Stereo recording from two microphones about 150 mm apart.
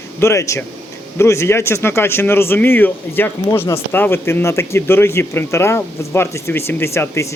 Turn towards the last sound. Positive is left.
turn(degrees=20)  # may be behind; listen again after turning